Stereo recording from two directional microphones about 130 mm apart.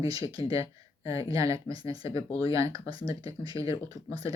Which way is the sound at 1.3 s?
25° right (ahead or behind).